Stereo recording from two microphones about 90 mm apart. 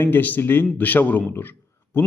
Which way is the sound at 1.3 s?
25° left (ahead or behind).